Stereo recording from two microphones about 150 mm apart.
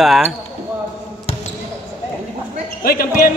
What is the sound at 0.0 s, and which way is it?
Speech, centre (ahead or behind).